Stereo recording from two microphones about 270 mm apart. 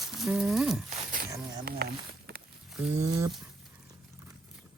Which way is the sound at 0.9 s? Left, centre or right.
Right.